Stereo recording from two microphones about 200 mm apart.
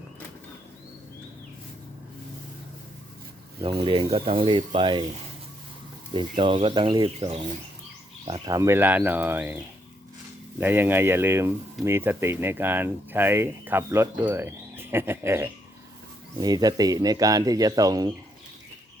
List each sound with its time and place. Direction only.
3.6 s speech: 25° right (ahead or behind)
6.1 s speech: 25° right (ahead or behind)
10.6 s speech: 10° right (ahead or behind)